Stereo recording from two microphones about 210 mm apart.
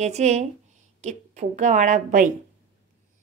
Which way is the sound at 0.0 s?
30° right (ahead or behind).